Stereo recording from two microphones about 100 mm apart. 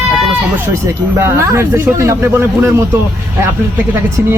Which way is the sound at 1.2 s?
30° right (ahead or behind).